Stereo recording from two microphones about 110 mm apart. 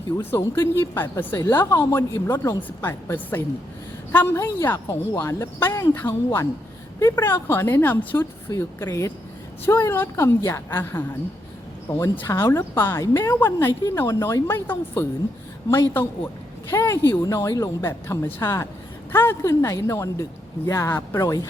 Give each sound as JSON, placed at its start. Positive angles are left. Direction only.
{"t": 0.2, "sound": "speech", "side_deg": 20}
{"t": 2.6, "sound": "a woman's voice", "side_deg": 15}
{"t": 12.3, "sound": "speech", "side_deg": 25}